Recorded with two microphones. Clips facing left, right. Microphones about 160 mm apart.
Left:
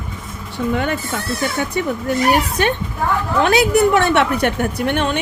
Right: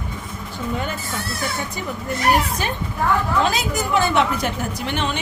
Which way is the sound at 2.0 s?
75° left (ahead or behind).